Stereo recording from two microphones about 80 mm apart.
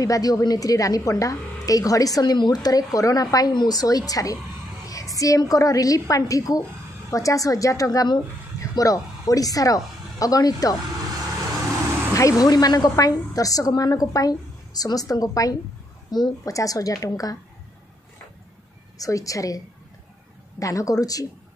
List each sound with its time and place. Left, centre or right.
0.0 s a woman's voice: left
2.3 s a woman's voice: left
12.1 s speech: left
12.4 s a woman's voice: left
16.1 s a woman's voice: left
16.4 s a woman's voice: left
18.9 s a woman's voice: left